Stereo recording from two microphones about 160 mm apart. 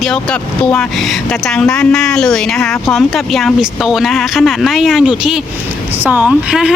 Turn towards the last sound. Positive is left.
turn(degrees=-5)  # may be behind; listen again after turning